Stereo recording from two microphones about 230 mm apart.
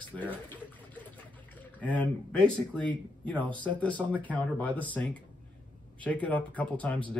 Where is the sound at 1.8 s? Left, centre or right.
Centre.